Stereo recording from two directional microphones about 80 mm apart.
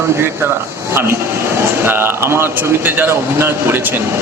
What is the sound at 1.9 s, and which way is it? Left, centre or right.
Speech, right.